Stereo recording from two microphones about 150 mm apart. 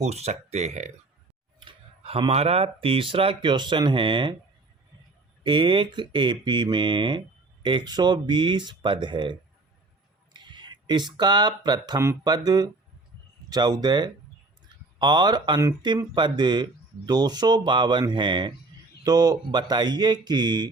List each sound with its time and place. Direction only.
0.0 s speech: 45° right (ahead or behind)
1.5 s speech: 35° right (ahead or behind)
5.4 s speech: 35° right (ahead or behind)